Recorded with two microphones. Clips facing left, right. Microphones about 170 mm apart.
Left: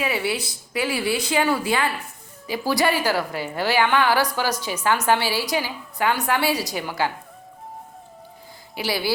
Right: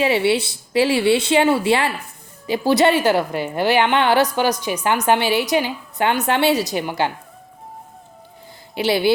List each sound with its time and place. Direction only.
0.0 s a woman's voice: 25° right (ahead or behind)
8.7 s speech: 25° right (ahead or behind)